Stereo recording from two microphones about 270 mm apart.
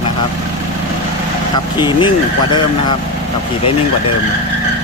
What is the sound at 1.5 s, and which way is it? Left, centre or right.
Speech, centre.